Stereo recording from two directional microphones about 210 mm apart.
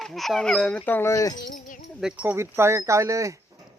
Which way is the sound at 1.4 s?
40° left (ahead or behind).